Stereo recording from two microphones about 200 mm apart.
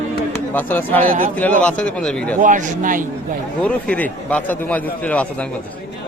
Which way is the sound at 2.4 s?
40° right (ahead or behind).